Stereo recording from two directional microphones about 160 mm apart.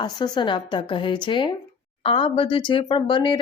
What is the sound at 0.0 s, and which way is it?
Speech, 30° left (ahead or behind).